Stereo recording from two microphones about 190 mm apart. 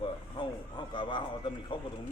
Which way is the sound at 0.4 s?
25° left (ahead or behind).